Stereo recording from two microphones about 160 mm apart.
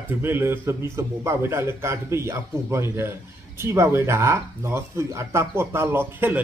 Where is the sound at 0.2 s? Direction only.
15° right (ahead or behind).